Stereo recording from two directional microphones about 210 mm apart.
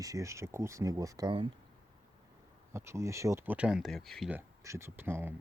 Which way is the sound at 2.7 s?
15° right (ahead or behind).